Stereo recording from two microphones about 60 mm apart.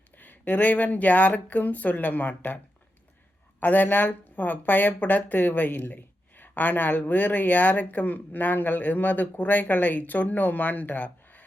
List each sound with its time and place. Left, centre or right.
0.2 s speech: left
3.6 s speech: left